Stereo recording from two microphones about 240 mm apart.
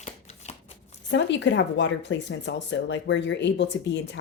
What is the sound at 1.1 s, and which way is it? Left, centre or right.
Speech, left.